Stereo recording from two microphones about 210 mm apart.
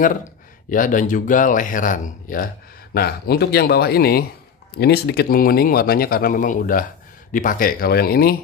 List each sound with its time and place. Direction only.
0.7 s speech: 40° left (ahead or behind)